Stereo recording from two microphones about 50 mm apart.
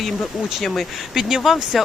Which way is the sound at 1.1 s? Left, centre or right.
Centre.